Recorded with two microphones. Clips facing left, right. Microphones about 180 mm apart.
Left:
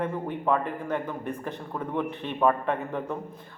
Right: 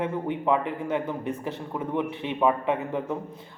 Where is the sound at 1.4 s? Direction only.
10° right (ahead or behind).